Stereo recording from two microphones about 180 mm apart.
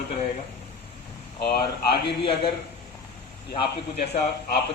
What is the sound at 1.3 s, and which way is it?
Speech, 65° left (ahead or behind).